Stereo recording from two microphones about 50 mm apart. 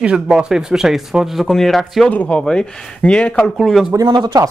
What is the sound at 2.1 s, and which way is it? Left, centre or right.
Speech, left.